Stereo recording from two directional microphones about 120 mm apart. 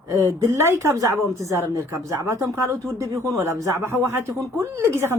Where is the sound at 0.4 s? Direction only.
25° right (ahead or behind).